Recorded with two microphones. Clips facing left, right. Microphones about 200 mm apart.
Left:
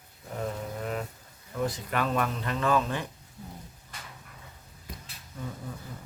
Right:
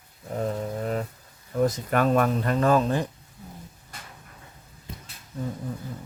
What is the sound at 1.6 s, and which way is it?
Speech, 45° right (ahead or behind).